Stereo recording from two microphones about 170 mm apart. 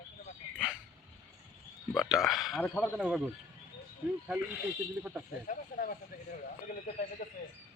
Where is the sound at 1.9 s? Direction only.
Centre (ahead or behind).